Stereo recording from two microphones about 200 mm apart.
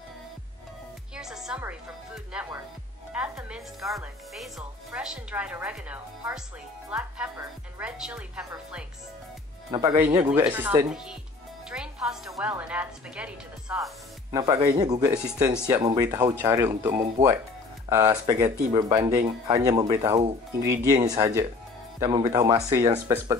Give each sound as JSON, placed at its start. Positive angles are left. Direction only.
{"t": 1.1, "sound": "speech", "side_deg": 0}
{"t": 9.7, "sound": "a woman's voice", "side_deg": -20}
{"t": 14.3, "sound": "speech", "side_deg": -15}